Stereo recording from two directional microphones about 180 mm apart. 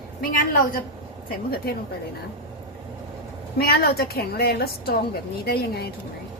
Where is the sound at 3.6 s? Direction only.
60° left (ahead or behind).